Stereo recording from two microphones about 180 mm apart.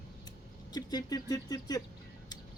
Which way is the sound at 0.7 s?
20° left (ahead or behind).